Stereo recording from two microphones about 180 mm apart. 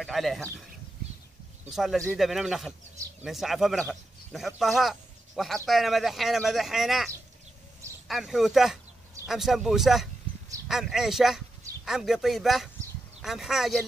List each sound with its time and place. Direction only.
0.0 s speech: centre (ahead or behind)
1.7 s speech: centre (ahead or behind)
8.1 s speech: centre (ahead or behind)